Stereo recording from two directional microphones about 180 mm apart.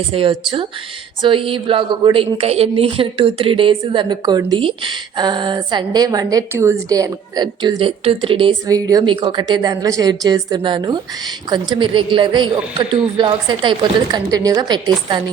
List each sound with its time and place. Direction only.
0.1 s a woman's voice: 30° right (ahead or behind)